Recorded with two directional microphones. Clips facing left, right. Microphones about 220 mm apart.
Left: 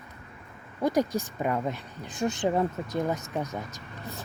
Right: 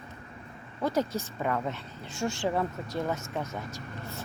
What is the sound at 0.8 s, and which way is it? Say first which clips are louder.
Speech: left 3 dB; 15° left (ahead or behind).